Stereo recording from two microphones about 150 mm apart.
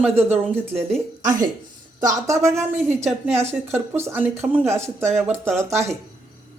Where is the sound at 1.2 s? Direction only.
60° right (ahead or behind).